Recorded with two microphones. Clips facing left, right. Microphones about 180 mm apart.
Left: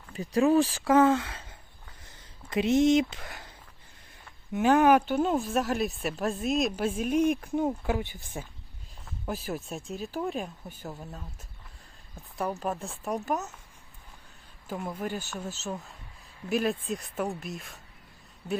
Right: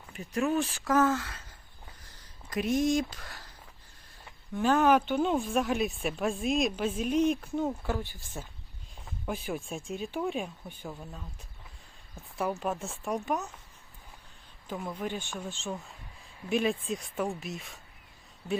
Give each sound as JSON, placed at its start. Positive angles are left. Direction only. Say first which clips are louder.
{"t": 0.1, "sound": "speech", "louder": "left 6 dB", "side_deg": 35}
{"t": 4.5, "sound": "speech", "louder": "left 3 dB", "side_deg": 15}
{"t": 9.2, "sound": "speech", "louder": "left 1 dB", "side_deg": 5}
{"t": 12.4, "sound": "speech", "louder": "even", "side_deg": 0}
{"t": 14.7, "sound": "speech", "louder": "left 1 dB", "side_deg": 5}